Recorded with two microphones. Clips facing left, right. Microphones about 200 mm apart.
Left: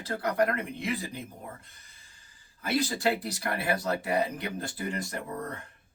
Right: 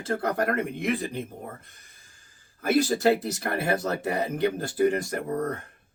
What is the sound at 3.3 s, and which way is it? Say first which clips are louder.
Speech: right 4 dB; 45° right (ahead or behind).